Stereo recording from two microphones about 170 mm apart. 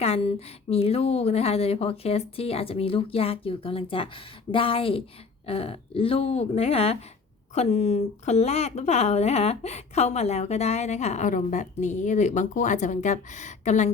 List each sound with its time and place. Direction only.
0.0 s speech: 35° left (ahead or behind)